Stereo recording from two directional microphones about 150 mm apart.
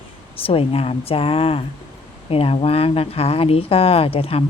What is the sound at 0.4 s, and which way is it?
Speech, 40° left (ahead or behind).